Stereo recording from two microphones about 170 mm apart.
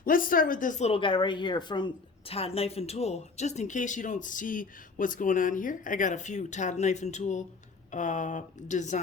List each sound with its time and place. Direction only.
0.0 s speech: 55° left (ahead or behind)